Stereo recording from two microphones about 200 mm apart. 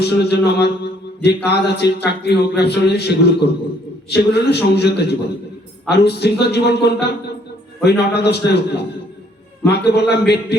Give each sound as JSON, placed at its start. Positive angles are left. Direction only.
{"t": 0.0, "sound": "a man's voice", "side_deg": 55}